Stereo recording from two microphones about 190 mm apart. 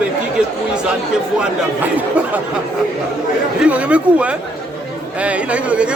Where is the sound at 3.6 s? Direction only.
5° right (ahead or behind).